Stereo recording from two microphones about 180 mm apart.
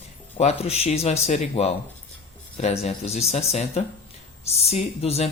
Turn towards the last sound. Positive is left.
turn(degrees=35)  # may be behind; listen again after turning